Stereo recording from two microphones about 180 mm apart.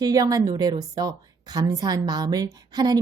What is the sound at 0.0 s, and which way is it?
Speech, 20° right (ahead or behind).